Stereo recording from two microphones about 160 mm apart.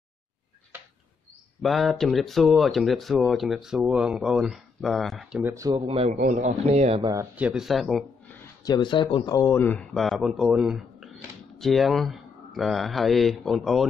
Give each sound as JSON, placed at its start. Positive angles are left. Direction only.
{"t": 1.6, "sound": "speech", "side_deg": 0}
{"t": 5.4, "sound": "speech", "side_deg": -20}
{"t": 5.9, "sound": "a man's voice", "side_deg": -40}
{"t": 6.1, "sound": "speech", "side_deg": -55}
{"t": 7.3, "sound": "speech", "side_deg": -5}
{"t": 8.6, "sound": "speech", "side_deg": 30}
{"t": 9.5, "sound": "speech", "side_deg": 10}